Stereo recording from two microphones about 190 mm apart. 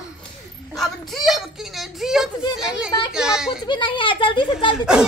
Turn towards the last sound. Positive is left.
turn(degrees=25)  # may be behind; listen again after turning